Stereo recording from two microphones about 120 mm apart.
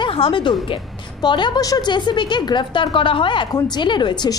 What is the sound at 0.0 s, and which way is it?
A woman's voice, 45° left (ahead or behind).